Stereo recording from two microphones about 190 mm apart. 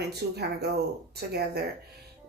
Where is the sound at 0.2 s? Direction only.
55° right (ahead or behind).